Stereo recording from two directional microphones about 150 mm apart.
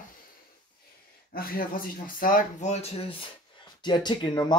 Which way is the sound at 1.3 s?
75° left (ahead or behind).